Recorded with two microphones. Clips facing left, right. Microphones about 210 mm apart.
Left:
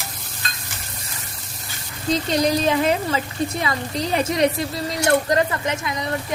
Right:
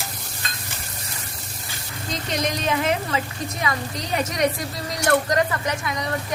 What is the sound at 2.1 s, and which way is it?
Speech, 30° left (ahead or behind).